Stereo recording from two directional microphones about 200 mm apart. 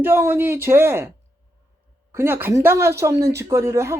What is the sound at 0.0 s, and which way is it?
Speech, 10° right (ahead or behind).